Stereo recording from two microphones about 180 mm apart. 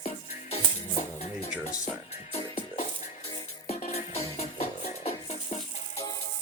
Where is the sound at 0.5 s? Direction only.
35° left (ahead or behind).